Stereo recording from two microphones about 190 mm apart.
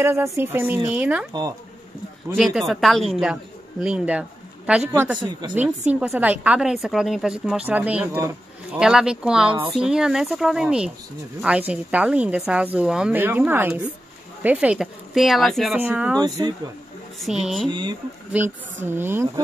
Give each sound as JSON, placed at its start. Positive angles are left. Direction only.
{"t": 0.0, "sound": "speech", "side_deg": -15}
{"t": 2.3, "sound": "a woman's voice", "side_deg": 0}
{"t": 9.5, "sound": "speech", "side_deg": -30}
{"t": 9.8, "sound": "a woman's voice", "side_deg": -5}
{"t": 17.6, "sound": "speech", "side_deg": -25}
{"t": 18.3, "sound": "speech", "side_deg": -10}